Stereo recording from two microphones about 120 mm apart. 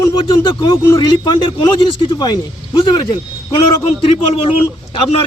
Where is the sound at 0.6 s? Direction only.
35° left (ahead or behind).